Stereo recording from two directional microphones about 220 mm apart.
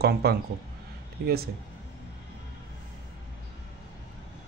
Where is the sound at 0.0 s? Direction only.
45° right (ahead or behind).